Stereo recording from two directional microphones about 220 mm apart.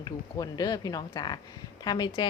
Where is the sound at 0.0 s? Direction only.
15° left (ahead or behind).